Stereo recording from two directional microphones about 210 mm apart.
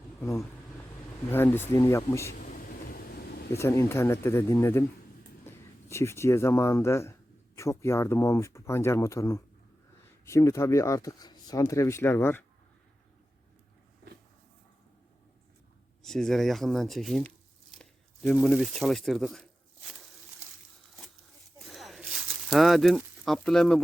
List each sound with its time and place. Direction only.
0.2 s speech: 15° left (ahead or behind)
2.4 s vehicle: 45° left (ahead or behind)
3.6 s speech: 15° left (ahead or behind)
16.0 s speech: centre (ahead or behind)
17.7 s a sound: 5° left (ahead or behind)
21.6 s a sound: centre (ahead or behind)